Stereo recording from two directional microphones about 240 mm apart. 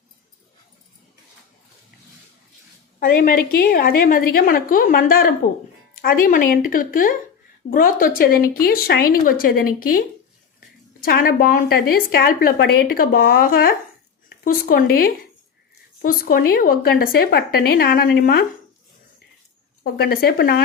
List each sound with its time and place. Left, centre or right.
3.0 s speech: left
11.0 s speech: left
19.8 s speech: left